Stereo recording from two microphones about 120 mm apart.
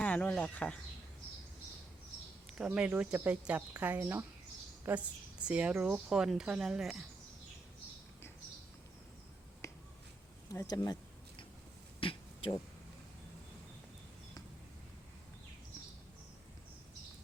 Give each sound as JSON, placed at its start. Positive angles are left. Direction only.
{"t": 0.0, "sound": "speech", "side_deg": 10}
{"t": 2.6, "sound": "a woman's voice", "side_deg": -10}
{"t": 4.9, "sound": "a woman's voice", "side_deg": -10}
{"t": 9.6, "sound": "finger snapping", "side_deg": 25}
{"t": 10.5, "sound": "speech", "side_deg": 30}
{"t": 11.9, "sound": "a sound", "side_deg": 50}